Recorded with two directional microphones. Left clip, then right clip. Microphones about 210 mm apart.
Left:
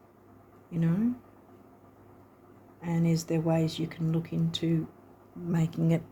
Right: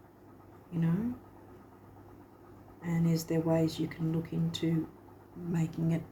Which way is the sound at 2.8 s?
55° left (ahead or behind).